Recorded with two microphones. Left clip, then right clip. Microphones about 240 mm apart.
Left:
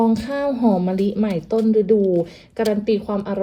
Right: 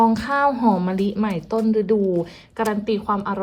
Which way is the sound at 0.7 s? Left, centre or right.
Centre.